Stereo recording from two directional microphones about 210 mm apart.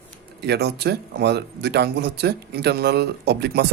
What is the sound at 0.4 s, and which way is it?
A man's voice, 50° right (ahead or behind).